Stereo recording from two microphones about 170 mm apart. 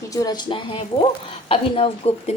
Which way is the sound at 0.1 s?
20° left (ahead or behind).